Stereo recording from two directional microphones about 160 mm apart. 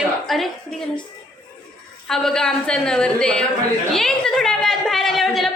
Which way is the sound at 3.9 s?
5° left (ahead or behind).